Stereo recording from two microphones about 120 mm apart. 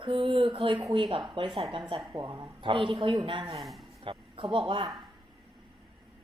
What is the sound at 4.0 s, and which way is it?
Speech, 50° right (ahead or behind).